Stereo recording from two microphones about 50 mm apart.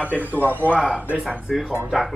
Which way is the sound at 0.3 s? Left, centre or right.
Left.